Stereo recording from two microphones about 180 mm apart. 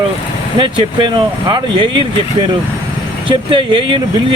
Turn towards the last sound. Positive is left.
turn(degrees=-25)  # may be behind; listen again after turning